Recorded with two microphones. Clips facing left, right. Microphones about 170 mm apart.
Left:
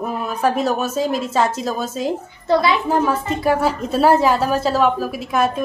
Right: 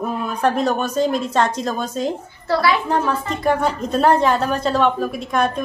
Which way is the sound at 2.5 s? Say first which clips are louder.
Left 2 dB; 20° left (ahead or behind).